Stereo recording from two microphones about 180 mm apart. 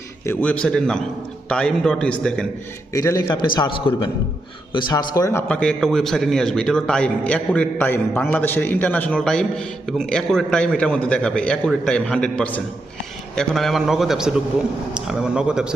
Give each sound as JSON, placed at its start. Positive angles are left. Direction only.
{"t": 0.3, "sound": "a man's voice", "side_deg": 5}
{"t": 2.9, "sound": "a man's voice", "side_deg": 15}
{"t": 5.5, "sound": "a man's voice", "side_deg": 5}